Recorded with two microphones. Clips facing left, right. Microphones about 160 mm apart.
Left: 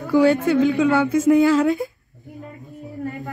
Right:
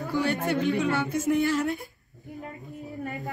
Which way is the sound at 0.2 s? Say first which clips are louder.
Left 10 dB; 90° left.